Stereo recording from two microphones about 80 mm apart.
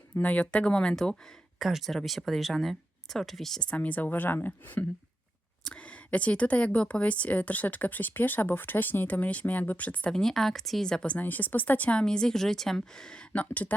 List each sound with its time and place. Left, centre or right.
0.2 s speech: centre
1.5 s speech: centre